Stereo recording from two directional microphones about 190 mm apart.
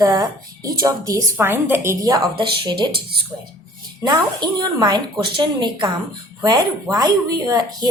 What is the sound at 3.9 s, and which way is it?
Speech, 20° right (ahead or behind).